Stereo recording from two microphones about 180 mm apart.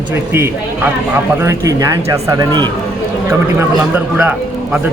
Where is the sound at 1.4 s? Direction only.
15° right (ahead or behind).